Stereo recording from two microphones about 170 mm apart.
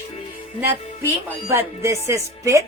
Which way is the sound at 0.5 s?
15° right (ahead or behind).